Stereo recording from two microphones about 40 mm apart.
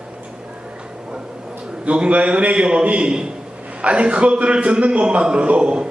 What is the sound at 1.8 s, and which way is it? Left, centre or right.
A man's voice, right.